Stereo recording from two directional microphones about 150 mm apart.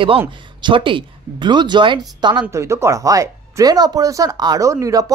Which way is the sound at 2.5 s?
20° right (ahead or behind).